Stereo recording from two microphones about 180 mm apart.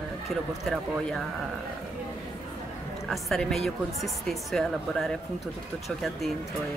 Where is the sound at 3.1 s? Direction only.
Centre (ahead or behind).